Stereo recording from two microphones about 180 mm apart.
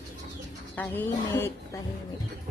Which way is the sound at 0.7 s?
10° left (ahead or behind).